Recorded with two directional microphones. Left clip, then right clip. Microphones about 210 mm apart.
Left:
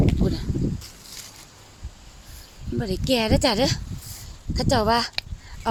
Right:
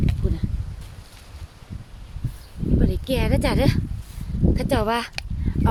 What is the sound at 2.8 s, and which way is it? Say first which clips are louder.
Speech: left 3 dB; 25° left (ahead or behind).